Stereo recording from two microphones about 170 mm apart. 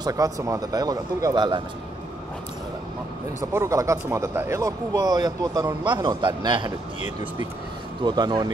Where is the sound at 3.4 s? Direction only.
15° right (ahead or behind).